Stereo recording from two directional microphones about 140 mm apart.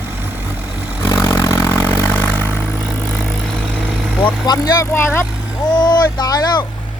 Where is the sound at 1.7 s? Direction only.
10° left (ahead or behind).